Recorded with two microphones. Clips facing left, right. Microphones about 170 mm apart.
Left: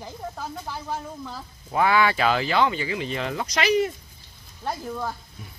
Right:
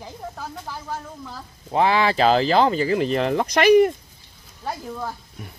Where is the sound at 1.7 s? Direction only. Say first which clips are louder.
Right 2 dB; 30° right (ahead or behind); by 3.9 s 55° right (ahead or behind).